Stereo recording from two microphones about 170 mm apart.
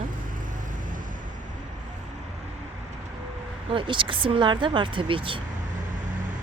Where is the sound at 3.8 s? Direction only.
30° right (ahead or behind).